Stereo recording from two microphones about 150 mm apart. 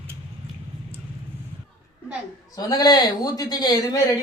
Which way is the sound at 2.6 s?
25° left (ahead or behind).